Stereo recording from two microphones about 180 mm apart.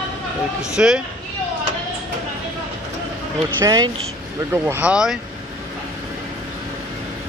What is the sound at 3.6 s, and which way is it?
Speech, 20° right (ahead or behind).